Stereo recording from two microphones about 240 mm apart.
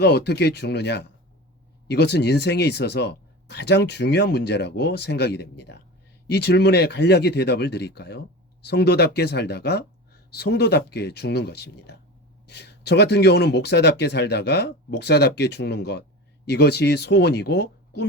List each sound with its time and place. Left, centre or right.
0.0 s speech: left